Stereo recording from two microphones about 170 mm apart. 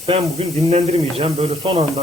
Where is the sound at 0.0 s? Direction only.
35° right (ahead or behind).